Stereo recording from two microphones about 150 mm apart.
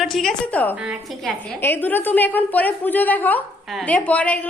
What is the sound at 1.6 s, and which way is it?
A woman's voice, 15° left (ahead or behind).